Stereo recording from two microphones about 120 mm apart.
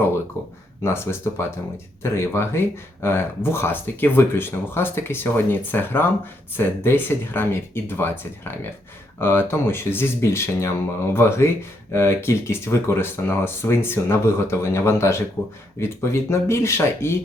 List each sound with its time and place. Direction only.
0.4 s speech: 20° left (ahead or behind)